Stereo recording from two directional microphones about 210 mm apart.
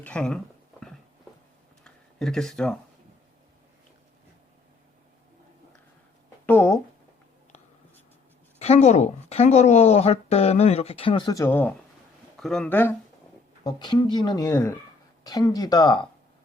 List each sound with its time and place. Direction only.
0.0 s a sound: 5° left (ahead or behind)
6.4 s speech: 10° left (ahead or behind)
8.5 s speech: 30° left (ahead or behind); by 13.0 s 10° left (ahead or behind)
13.7 s speech: 20° left (ahead or behind)